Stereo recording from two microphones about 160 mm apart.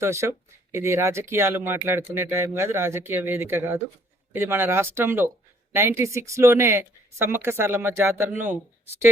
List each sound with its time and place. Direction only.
0.0 s speech: 15° right (ahead or behind)